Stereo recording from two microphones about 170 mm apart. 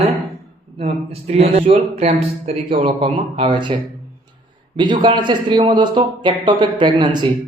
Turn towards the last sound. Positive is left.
turn(degrees=-25)  # may be behind; listen again after turning